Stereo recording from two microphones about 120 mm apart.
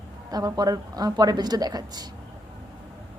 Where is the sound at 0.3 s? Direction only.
35° right (ahead or behind).